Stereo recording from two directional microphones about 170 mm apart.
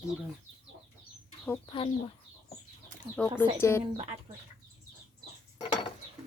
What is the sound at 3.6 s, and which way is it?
Speech, 15° left (ahead or behind).